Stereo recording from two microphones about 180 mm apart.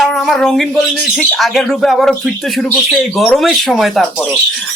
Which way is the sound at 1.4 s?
Centre (ahead or behind).